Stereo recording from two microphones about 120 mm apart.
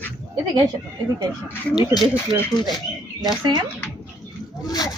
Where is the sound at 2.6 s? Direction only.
35° left (ahead or behind).